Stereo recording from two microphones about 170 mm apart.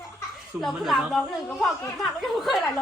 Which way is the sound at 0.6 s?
Centre (ahead or behind).